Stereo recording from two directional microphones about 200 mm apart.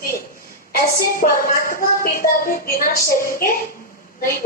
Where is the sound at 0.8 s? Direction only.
45° left (ahead or behind).